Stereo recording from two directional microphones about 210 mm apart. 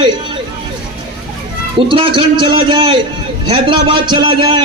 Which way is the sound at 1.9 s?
25° right (ahead or behind).